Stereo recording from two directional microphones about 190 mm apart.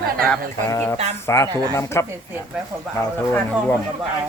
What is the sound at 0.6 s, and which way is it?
Speech, 15° left (ahead or behind).